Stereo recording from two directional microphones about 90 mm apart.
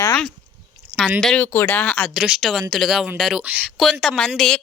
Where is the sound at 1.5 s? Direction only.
25° left (ahead or behind).